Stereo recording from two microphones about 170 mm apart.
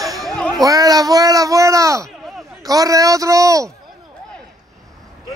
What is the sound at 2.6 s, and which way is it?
A man's voice, 20° right (ahead or behind).